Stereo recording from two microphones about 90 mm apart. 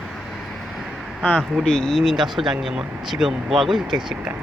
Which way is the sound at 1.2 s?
15° left (ahead or behind).